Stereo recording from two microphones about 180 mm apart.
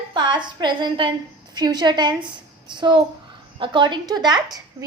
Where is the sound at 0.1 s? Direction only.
25° right (ahead or behind).